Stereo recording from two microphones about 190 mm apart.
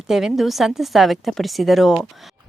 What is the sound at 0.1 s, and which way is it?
A woman's voice, centre (ahead or behind).